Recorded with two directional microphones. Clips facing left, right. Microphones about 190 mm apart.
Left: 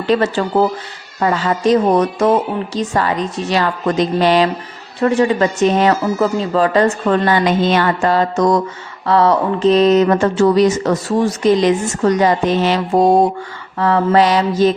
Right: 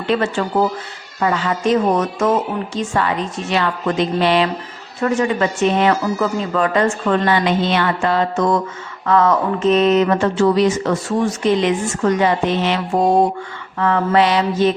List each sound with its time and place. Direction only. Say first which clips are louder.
0.1 s speech: left 3 dB; 40° left (ahead or behind)